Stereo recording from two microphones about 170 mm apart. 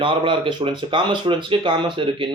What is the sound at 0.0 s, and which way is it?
A man's voice, 30° right (ahead or behind).